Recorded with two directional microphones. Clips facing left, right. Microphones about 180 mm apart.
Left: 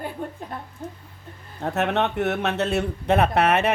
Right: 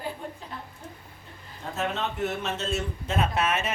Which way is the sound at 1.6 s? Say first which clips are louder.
Left 7 dB; 65° left (ahead or behind).